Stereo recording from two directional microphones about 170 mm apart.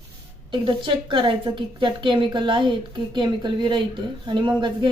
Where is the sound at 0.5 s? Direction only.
30° right (ahead or behind).